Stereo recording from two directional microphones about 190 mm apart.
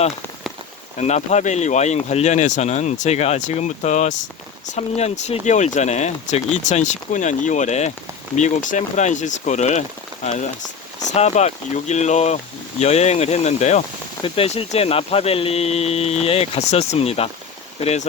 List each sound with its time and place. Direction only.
0.9 s speech: 35° left (ahead or behind)